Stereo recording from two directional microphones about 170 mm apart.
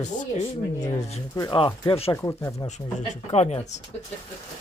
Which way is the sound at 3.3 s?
40° left (ahead or behind).